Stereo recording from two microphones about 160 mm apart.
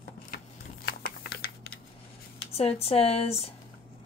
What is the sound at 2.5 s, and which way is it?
Speech, 40° left (ahead or behind).